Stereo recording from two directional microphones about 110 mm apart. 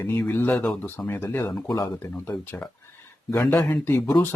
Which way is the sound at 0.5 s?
5° left (ahead or behind).